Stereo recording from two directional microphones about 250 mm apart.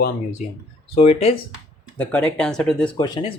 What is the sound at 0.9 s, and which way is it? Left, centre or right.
Speech, left.